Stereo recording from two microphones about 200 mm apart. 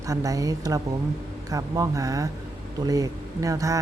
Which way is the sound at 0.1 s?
15° right (ahead or behind).